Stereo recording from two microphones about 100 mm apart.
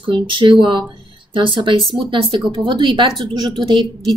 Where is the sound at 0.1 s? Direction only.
55° right (ahead or behind).